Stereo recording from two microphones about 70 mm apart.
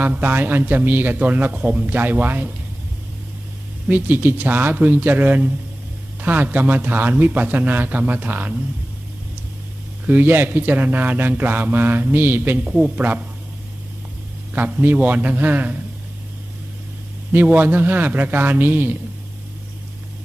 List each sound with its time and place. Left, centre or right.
0.0 s a man's voice: right
3.8 s a man's voice: right
10.1 s a man's voice: right
14.5 s a man's voice: right
17.3 s a man's voice: right